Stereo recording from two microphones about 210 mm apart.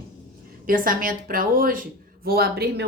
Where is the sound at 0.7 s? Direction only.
40° right (ahead or behind).